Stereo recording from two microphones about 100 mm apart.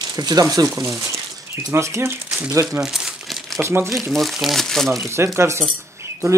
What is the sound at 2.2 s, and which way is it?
Crumpling, 10° right (ahead or behind).